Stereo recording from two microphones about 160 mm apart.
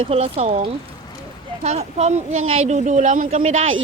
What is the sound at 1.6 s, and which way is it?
Speech, 45° right (ahead or behind).